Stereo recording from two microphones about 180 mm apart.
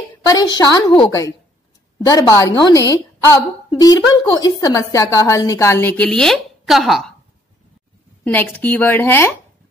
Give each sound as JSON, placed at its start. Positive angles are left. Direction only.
{"t": 0.3, "sound": "a woman's voice", "side_deg": 25}
{"t": 8.2, "sound": "a woman's voice", "side_deg": 10}